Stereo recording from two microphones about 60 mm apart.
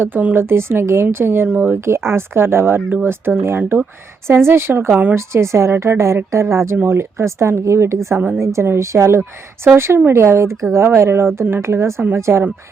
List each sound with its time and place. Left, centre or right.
0.0 s speech: right
0.3 s speech: right
1.5 s speech: right
1.7 s speech: right
4.9 s speech: right
5.1 s speech: right
6.7 s speech: right